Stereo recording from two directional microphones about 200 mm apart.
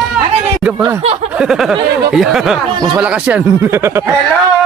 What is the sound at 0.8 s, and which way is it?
Speech, 25° right (ahead or behind).